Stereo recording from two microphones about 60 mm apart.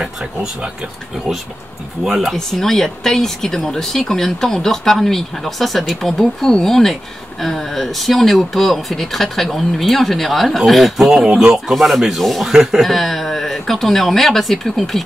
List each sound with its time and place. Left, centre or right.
0.0 s speech: centre
2.0 s speech: centre
2.3 s speech: centre
11.2 s speech: centre
11.5 s speech: centre